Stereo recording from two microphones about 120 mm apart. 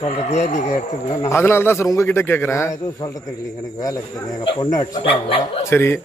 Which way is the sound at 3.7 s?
30° left (ahead or behind).